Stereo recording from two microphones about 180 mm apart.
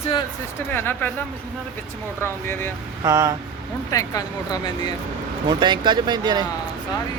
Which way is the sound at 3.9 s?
20° left (ahead or behind).